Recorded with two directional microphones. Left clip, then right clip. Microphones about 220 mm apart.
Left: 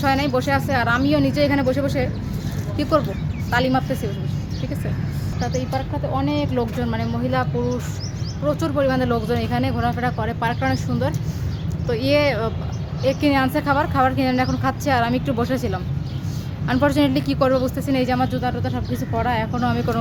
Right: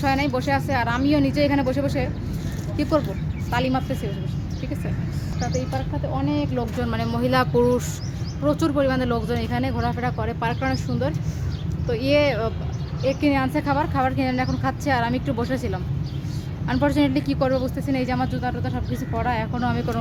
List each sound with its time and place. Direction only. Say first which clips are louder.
0.0 s speech: left 3 dB; centre (ahead or behind)
3.5 s speech: left 4 dB; centre (ahead or behind)
5.4 s speech: left 3 dB; 5° left (ahead or behind)
6.9 s speech: even; 30° right (ahead or behind)
7.2 s speech: right 3 dB; 45° right (ahead or behind)
8.4 s speech: left 1 dB; 10° right (ahead or behind)